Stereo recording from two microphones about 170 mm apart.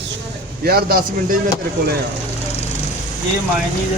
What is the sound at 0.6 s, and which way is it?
Speech, 65° right (ahead or behind).